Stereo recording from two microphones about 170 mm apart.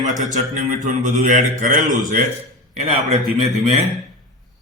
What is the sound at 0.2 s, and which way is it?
A man's voice, 45° right (ahead or behind).